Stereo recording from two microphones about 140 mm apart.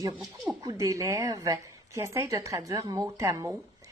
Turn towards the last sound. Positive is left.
turn(degrees=-25)  # may be behind; listen again after turning